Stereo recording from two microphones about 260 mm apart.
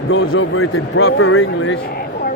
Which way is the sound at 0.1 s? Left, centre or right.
Left.